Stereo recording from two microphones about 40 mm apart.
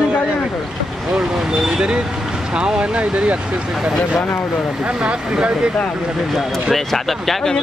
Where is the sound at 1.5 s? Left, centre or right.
Centre.